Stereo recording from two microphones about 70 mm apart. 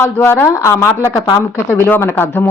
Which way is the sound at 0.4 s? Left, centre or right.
Left.